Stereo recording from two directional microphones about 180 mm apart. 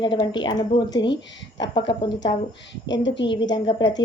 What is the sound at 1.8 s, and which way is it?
Speech, 80° left.